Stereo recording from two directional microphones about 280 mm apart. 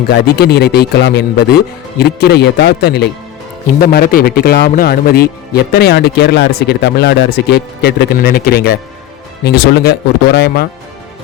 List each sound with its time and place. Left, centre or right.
0.1 s speech: left